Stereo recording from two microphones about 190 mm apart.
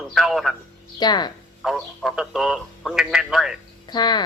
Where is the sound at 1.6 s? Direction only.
Centre (ahead or behind).